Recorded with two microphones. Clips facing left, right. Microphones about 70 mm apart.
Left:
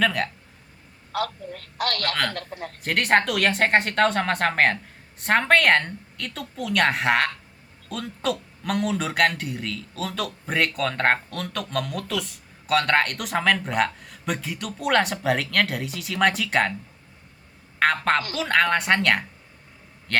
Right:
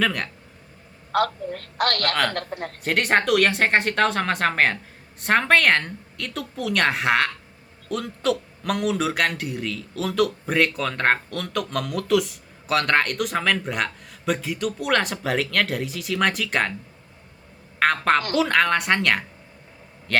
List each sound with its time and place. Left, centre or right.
0.0 s a man's voice: centre
1.1 s a woman's voice: right
2.8 s a man's voice: centre
17.7 s a woman's voice: centre